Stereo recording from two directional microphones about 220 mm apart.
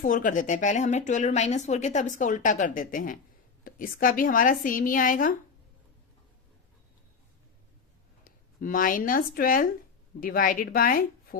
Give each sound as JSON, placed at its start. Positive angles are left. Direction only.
{"t": 0.0, "sound": "a woman's voice", "side_deg": 40}
{"t": 8.2, "sound": "a woman's voice", "side_deg": 40}